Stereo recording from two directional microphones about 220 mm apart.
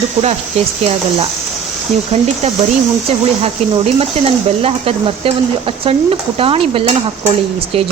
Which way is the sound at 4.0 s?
25° right (ahead or behind).